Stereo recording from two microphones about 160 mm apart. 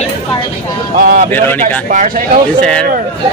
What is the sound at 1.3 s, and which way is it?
Speech, 10° left (ahead or behind).